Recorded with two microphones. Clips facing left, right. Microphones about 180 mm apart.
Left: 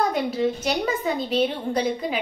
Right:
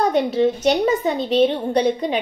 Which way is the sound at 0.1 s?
25° right (ahead or behind).